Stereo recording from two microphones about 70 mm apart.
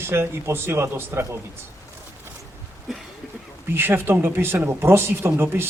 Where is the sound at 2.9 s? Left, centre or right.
Centre.